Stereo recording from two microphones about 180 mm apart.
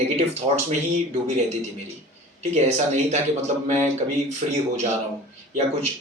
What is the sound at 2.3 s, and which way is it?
Speech, 40° right (ahead or behind).